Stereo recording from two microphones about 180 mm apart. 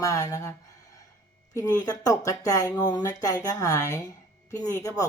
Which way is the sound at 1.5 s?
20° left (ahead or behind).